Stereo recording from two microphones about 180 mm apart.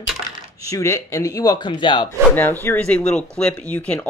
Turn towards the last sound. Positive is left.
turn(degrees=5)  # may be behind; listen again after turning